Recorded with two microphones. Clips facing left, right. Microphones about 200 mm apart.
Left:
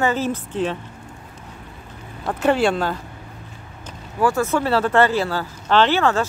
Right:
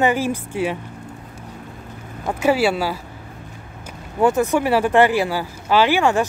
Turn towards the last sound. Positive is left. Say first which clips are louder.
# right 1 dB
turn(degrees=-15)  # may be behind; listen again after turning